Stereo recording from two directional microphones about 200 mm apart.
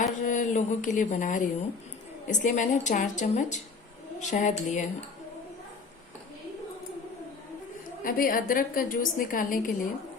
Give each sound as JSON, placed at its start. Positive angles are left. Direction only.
{"t": 0.0, "sound": "a sound", "side_deg": 40}
{"t": 2.2, "sound": "a woman's voice", "side_deg": 40}
{"t": 8.0, "sound": "a woman's voice", "side_deg": 45}